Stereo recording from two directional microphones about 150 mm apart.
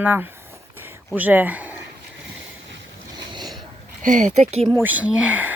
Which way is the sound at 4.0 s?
55° right (ahead or behind).